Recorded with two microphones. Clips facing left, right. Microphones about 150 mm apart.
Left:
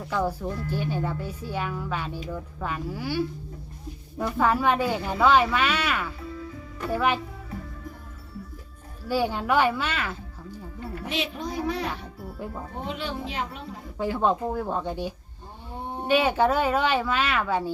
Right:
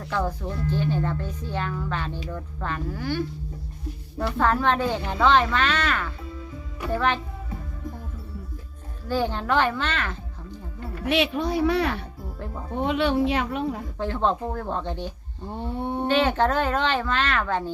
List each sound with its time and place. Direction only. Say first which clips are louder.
0.0 s speech: left 1 dB; 10° left (ahead or behind)
4.4 s speech: even; 10° left (ahead or behind)
9.0 s speech: even; 10° left (ahead or behind)
11.0 s speech: right 8 dB; 65° right (ahead or behind)
14.0 s speech: left 1 dB; 10° left (ahead or behind)
15.5 s a sound: right 7 dB; 65° right (ahead or behind)
16.0 s speech: left 1 dB; 10° left (ahead or behind)